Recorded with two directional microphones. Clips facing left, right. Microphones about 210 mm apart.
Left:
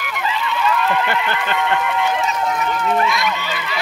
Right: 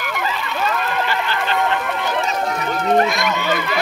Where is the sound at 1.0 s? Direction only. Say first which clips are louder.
Left 1 dB; 55° left (ahead or behind).